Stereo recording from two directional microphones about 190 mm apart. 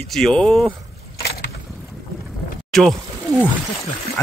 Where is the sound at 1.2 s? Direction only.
60° left (ahead or behind).